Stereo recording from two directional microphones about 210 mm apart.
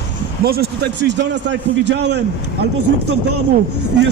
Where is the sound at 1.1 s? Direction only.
55° right (ahead or behind).